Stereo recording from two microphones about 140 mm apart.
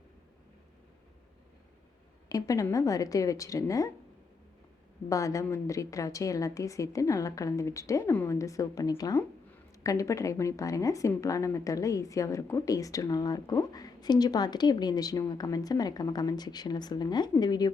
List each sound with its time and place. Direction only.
2.3 s a woman's voice: 25° left (ahead or behind)
5.0 s a woman's voice: 25° left (ahead or behind)